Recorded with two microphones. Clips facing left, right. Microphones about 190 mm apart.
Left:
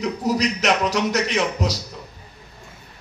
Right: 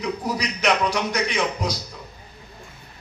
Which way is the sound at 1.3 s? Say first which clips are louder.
Left 2 dB; 85° left.